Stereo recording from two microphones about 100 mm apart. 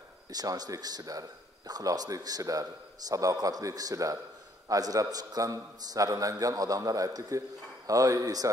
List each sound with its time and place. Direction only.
0.3 s a man's voice: 40° right (ahead or behind)